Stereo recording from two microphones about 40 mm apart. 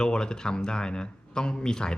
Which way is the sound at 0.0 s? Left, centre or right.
Centre.